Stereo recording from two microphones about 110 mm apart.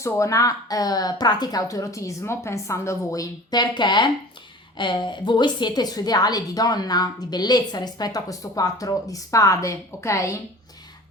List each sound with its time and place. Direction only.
0.0 s a woman's voice: 30° left (ahead or behind)